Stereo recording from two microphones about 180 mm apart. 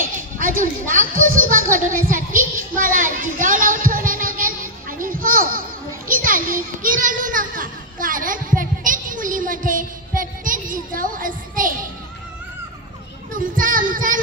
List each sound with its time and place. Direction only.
0.4 s a woman's voice: 50° right (ahead or behind)
13.3 s child singing: 50° right (ahead or behind)